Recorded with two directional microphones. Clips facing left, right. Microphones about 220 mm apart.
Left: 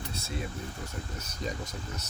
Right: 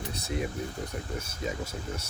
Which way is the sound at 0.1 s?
15° right (ahead or behind).